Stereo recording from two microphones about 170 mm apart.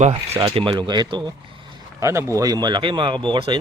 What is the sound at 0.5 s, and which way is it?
Speech, 30° right (ahead or behind).